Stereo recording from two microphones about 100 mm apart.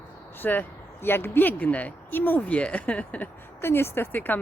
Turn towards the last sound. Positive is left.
turn(degrees=20)  # may be behind; listen again after turning